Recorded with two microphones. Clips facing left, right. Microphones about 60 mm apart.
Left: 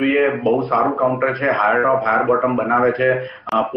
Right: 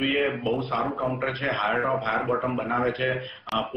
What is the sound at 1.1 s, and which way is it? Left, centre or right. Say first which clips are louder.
Speech: left 9 dB; left.